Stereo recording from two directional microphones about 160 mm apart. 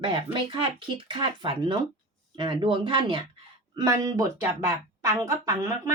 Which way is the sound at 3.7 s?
20° right (ahead or behind).